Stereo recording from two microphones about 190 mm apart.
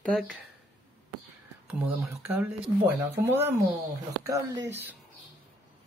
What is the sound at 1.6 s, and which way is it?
Speech, 5° right (ahead or behind).